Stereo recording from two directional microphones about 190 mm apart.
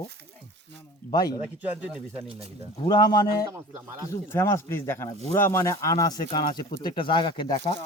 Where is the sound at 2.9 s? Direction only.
20° left (ahead or behind).